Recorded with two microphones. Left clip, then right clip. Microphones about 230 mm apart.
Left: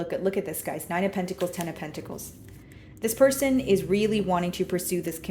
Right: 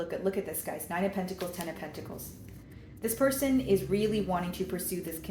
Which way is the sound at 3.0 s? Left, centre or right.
Left.